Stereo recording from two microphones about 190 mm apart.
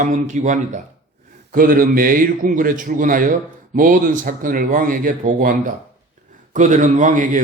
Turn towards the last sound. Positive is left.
turn(degrees=-45)  # may be behind; listen again after turning